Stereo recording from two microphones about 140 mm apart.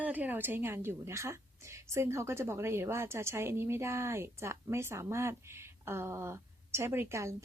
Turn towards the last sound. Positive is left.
turn(degrees=-20)  # may be behind; listen again after turning